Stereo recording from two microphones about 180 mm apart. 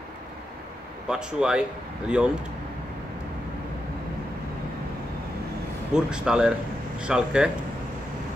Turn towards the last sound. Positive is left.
turn(degrees=-5)  # may be behind; listen again after turning